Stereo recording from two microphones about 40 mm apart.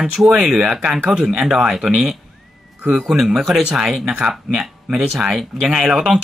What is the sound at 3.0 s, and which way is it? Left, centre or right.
A man's voice, centre.